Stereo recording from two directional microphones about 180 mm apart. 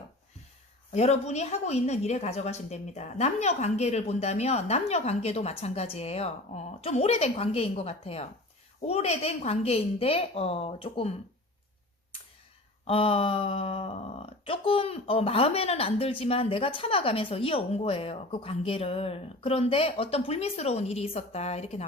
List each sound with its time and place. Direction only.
0.9 s speech: 35° left (ahead or behind)
12.9 s speech: 30° left (ahead or behind)